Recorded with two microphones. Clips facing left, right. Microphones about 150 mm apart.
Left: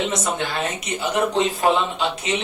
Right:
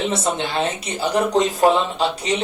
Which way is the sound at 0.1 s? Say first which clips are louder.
Right 2 dB; 25° right (ahead or behind).